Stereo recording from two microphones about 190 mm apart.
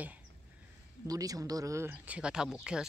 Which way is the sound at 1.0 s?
20° right (ahead or behind).